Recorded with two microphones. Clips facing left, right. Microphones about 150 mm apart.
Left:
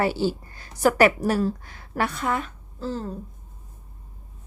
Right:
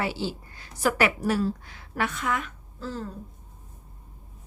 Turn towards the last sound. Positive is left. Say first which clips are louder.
# left 4 dB
turn(degrees=30)  # may be behind; listen again after turning